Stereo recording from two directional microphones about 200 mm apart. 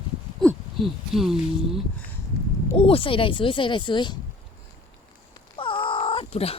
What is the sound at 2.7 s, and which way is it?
Speech, 25° left (ahead or behind).